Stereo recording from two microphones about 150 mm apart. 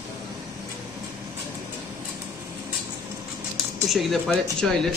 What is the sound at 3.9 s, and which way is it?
Speech, centre (ahead or behind).